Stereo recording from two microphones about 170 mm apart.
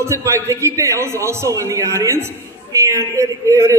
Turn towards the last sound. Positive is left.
turn(degrees=-15)  # may be behind; listen again after turning